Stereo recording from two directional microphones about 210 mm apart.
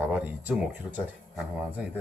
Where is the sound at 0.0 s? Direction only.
5° right (ahead or behind).